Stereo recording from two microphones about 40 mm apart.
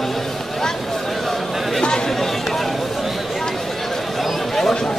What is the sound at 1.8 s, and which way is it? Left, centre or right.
Chatter, centre.